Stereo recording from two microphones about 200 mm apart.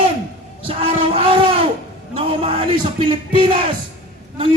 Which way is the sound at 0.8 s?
30° right (ahead or behind).